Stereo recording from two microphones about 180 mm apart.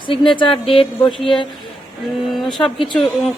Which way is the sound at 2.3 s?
Centre (ahead or behind).